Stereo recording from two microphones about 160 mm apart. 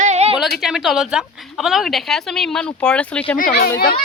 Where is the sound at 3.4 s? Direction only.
70° left (ahead or behind).